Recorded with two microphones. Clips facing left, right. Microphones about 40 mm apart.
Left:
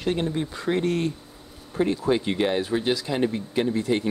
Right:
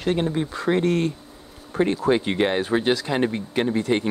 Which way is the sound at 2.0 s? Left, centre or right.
Right.